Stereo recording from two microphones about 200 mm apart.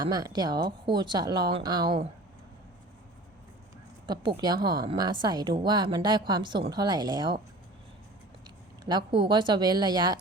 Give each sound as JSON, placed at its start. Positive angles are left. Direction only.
{"t": 0.0, "sound": "a woman's voice", "side_deg": -20}
{"t": 4.0, "sound": "a woman's voice", "side_deg": -25}
{"t": 8.8, "sound": "a woman's voice", "side_deg": -20}